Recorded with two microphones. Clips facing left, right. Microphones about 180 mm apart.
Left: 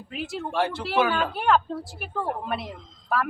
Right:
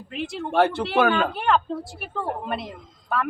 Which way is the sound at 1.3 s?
Centre (ahead or behind).